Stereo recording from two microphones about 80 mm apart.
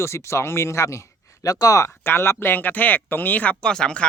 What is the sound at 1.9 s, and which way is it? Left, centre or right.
Speech, left.